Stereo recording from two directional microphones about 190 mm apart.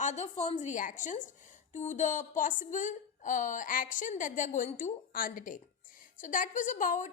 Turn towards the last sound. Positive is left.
turn(degrees=45)  # may be behind; listen again after turning